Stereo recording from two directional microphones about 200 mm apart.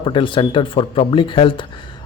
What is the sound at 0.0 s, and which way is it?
A man's voice, 25° left (ahead or behind).